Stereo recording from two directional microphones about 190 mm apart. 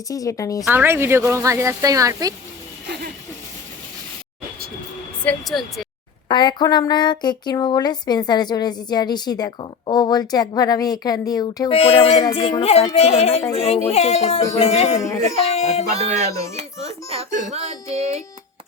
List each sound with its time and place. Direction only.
0.1 s speech: 15° left (ahead or behind)
0.6 s a woman's voice: 10° right (ahead or behind)
5.2 s a woman's voice: 5° left (ahead or behind)
6.2 s speech: 25° left (ahead or behind)
16.6 s speech: 30° right (ahead or behind)